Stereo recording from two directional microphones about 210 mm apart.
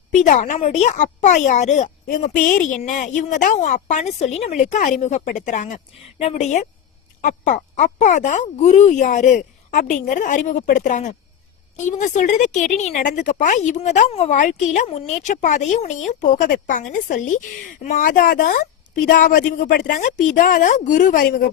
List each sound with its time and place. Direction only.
0.1 s a woman's voice: 35° left (ahead or behind)